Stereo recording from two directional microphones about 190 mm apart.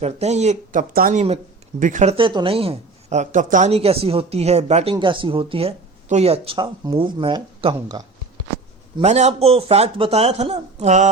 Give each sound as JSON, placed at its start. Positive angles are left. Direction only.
{"t": 0.0, "sound": "a man's voice", "side_deg": -35}
{"t": 9.0, "sound": "a man's voice", "side_deg": -35}